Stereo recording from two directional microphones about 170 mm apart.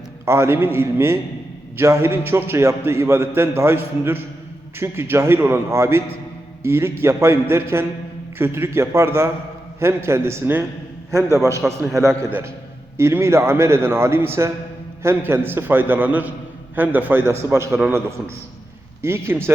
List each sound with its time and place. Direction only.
0.3 s a man's voice: 15° right (ahead or behind)
19.0 s a man's voice: 15° right (ahead or behind)